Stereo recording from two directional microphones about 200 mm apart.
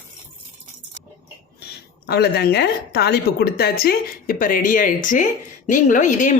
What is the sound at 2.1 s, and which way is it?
A woman's voice, 55° left (ahead or behind).